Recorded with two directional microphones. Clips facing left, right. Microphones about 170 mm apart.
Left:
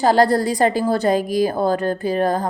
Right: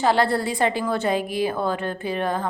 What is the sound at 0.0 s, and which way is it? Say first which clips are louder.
A woman's voice: left 5 dB; 40° left (ahead or behind).